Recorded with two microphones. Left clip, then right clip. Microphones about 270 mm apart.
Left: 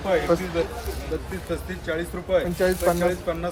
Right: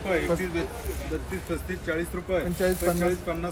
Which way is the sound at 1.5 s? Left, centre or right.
Centre.